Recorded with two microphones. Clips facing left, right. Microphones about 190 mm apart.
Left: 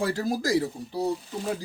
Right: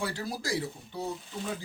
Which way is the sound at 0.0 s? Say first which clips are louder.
Left 8 dB; 40° left (ahead or behind).